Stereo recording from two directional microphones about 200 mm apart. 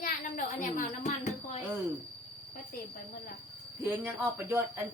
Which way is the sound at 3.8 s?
10° right (ahead or behind).